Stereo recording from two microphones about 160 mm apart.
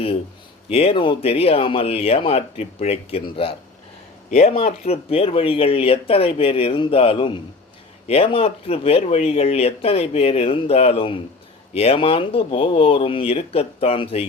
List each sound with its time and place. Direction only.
0.7 s speech: 40° left (ahead or behind)